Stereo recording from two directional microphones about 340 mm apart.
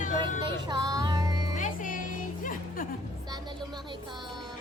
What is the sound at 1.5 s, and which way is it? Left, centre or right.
Music, left.